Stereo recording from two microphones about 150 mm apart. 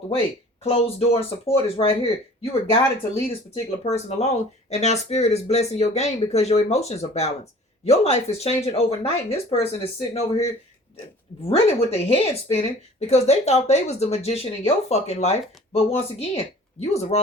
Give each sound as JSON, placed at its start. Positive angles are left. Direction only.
{"t": 0.6, "sound": "speech", "side_deg": 40}
{"t": 11.4, "sound": "speech", "side_deg": 40}